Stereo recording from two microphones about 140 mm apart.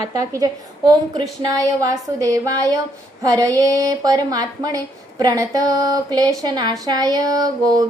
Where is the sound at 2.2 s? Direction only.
25° right (ahead or behind).